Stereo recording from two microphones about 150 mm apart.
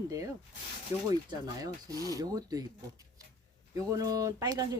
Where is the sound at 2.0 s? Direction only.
25° right (ahead or behind).